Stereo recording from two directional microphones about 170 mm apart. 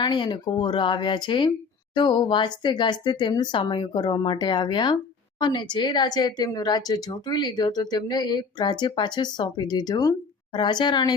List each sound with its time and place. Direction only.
0.0 s a woman's voice: 25° left (ahead or behind)